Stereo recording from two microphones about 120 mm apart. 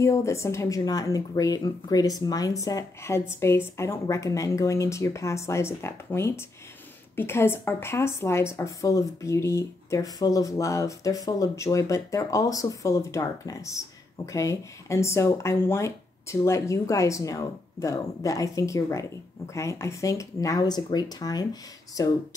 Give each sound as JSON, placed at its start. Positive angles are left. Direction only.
{"t": 0.0, "sound": "speech", "side_deg": 25}